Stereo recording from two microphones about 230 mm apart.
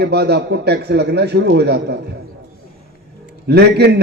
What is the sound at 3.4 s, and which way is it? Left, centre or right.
Speech, right.